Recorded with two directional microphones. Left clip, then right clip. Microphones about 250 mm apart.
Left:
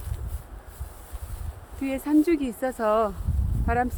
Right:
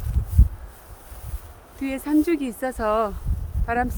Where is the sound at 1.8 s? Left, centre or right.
Centre.